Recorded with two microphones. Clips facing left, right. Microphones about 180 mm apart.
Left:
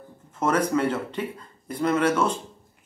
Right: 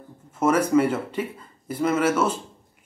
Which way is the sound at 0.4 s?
10° right (ahead or behind).